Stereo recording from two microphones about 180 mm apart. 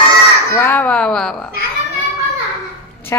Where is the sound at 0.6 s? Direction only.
10° left (ahead or behind).